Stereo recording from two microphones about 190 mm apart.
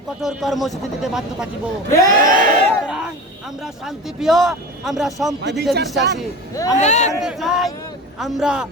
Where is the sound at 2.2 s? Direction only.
45° right (ahead or behind).